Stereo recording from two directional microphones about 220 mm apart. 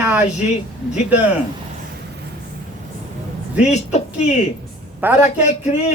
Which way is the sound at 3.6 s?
30° left (ahead or behind).